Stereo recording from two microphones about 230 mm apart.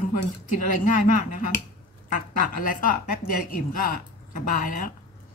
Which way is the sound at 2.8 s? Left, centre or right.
Left.